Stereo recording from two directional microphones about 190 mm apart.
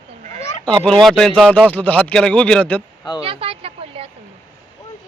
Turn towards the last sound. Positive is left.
turn(degrees=-30)  # may be behind; listen again after turning